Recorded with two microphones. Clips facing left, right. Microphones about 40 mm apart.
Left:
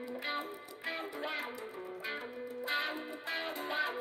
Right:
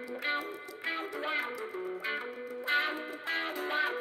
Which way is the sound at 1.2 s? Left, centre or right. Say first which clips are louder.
Right 5 dB; right.